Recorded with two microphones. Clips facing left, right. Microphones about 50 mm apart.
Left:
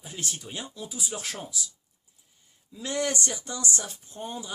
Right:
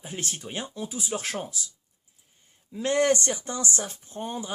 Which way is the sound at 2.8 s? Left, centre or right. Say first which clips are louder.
Right 6 dB; right.